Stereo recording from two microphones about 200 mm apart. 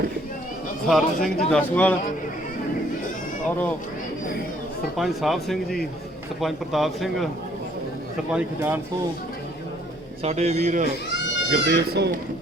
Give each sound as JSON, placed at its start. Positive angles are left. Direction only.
{"t": 0.9, "sound": "speech", "side_deg": 0}
{"t": 4.9, "sound": "speech", "side_deg": 0}
{"t": 8.3, "sound": "speech", "side_deg": -5}
{"t": 10.2, "sound": "speech", "side_deg": -35}
{"t": 10.8, "sound": "a sound", "side_deg": 60}
{"t": 11.5, "sound": "speech", "side_deg": -55}